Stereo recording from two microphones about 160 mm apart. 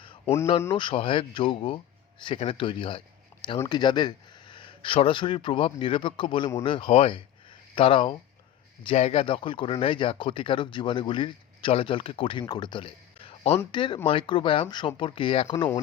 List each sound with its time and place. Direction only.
0.8 s speech: 30° left (ahead or behind)
15.5 s speech: 25° left (ahead or behind)